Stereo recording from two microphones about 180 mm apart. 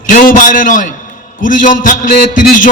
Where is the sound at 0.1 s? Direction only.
50° left (ahead or behind).